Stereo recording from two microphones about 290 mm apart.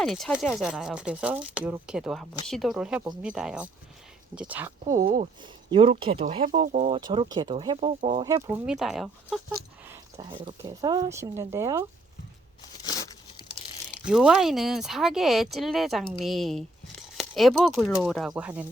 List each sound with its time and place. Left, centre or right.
0.0 s speech: centre
4.9 s speech: right
7.0 s speech: centre
12.8 s tearing: centre
14.0 s speech: centre